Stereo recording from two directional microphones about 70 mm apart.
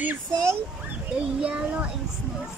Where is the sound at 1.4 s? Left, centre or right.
Centre.